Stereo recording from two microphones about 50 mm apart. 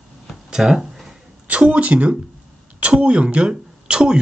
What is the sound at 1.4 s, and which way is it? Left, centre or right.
Speech, right.